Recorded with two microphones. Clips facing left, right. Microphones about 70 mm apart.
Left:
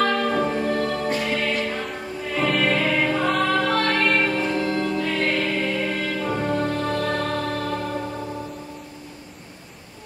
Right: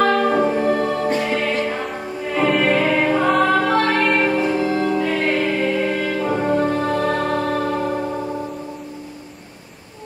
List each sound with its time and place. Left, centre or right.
0.0 s music: centre